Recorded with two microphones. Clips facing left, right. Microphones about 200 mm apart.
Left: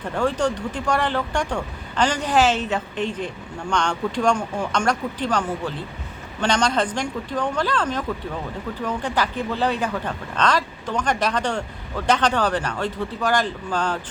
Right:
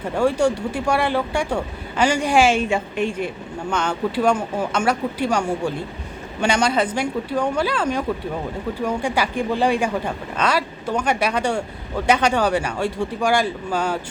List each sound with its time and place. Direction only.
0.1 s speech: 10° right (ahead or behind)